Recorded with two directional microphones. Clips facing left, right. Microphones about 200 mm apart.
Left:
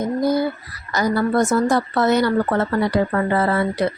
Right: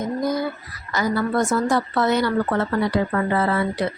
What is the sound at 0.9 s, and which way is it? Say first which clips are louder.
Speech: left 3 dB; 40° left (ahead or behind).